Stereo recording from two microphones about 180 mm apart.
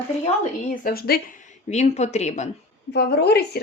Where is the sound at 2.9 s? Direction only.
65° left (ahead or behind).